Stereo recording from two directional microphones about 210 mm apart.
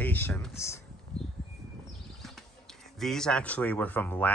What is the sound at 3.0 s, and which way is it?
Speech, centre (ahead or behind).